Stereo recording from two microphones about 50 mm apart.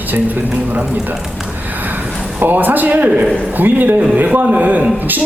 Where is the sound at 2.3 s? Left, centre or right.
Right.